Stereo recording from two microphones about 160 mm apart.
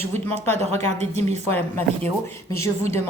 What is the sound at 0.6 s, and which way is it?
Speech, 45° right (ahead or behind).